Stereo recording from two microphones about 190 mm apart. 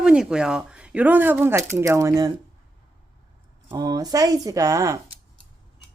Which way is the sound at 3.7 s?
20° right (ahead or behind).